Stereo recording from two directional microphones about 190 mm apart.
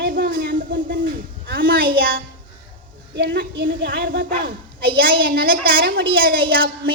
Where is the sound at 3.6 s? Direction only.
75° right (ahead or behind).